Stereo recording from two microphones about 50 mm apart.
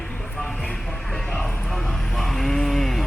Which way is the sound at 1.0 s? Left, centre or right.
Centre.